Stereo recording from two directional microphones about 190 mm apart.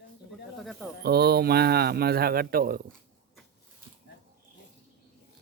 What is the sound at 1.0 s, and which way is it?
Speech, 55° right (ahead or behind).